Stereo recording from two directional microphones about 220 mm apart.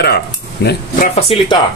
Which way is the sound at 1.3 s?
25° left (ahead or behind).